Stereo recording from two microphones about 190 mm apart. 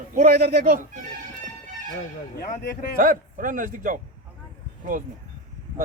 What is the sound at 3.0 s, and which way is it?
Speech, 45° right (ahead or behind).